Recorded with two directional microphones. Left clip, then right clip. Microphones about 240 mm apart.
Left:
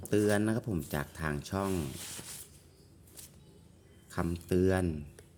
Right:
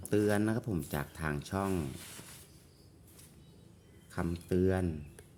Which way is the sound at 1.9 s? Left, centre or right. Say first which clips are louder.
Left 4 dB; left.